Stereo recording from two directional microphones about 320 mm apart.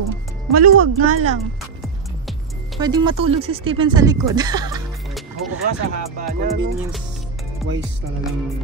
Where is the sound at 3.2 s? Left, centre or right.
Centre.